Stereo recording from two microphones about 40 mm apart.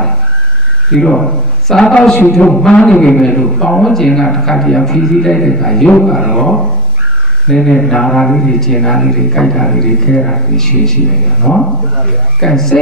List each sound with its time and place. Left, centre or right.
0.9 s a man's voice: centre
7.5 s mantra: centre
7.9 s a man's voice: centre